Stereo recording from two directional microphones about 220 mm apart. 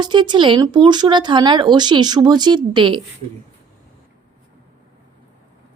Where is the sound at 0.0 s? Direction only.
20° right (ahead or behind).